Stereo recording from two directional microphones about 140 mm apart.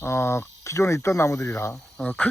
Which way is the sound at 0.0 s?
20° left (ahead or behind).